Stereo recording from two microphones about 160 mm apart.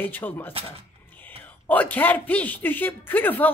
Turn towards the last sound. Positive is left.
turn(degrees=10)  # may be behind; listen again after turning